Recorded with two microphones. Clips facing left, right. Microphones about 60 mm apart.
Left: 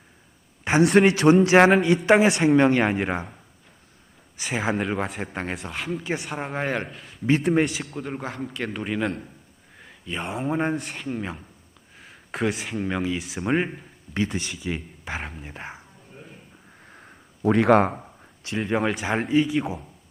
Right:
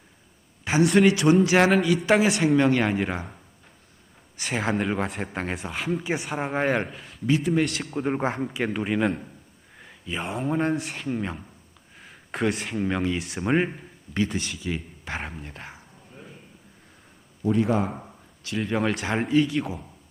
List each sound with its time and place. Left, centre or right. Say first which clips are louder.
0.6 s a sound: left 2 dB; left
1.0 s a woman's voice: left 2 dB; left; by 3.2 s centre
4.4 s speech: even; centre
7.3 s speech: left 2 dB; left
7.6 s speech: left 1 dB; centre
8.0 s speech: right 10 dB; right
8.5 s speech: right 2 dB; centre
14.1 s a woman's voice: even; left
14.3 s speech: even; centre
15.2 s speech: even; centre
15.5 s a woman's voice: left 4 dB; left
17.4 s a man's voice: left 5 dB; left
18.6 s speech: left 1 dB; centre